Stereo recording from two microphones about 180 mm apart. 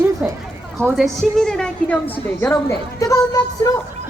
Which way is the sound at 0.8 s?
Centre (ahead or behind).